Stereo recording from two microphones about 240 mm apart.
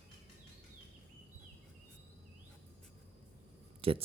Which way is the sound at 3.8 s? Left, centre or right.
Right.